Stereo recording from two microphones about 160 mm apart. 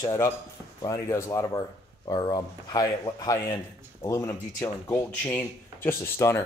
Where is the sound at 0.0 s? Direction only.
20° left (ahead or behind).